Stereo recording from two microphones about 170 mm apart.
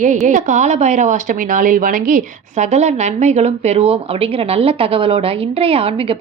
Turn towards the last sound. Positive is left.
turn(degrees=-35)  # may be behind; listen again after turning